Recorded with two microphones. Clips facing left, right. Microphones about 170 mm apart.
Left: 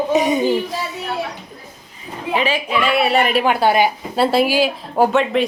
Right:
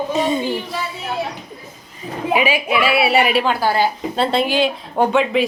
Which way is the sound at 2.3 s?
10° right (ahead or behind).